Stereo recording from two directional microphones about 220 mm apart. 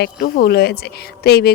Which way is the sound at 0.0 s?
45° left (ahead or behind).